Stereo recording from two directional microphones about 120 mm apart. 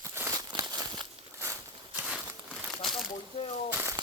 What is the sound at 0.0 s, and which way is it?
Crumpling, 20° right (ahead or behind).